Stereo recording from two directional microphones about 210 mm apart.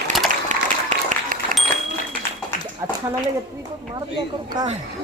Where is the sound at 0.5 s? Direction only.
40° right (ahead or behind).